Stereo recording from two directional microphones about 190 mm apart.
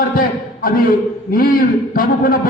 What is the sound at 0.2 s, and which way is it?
A man's voice, 50° left (ahead or behind).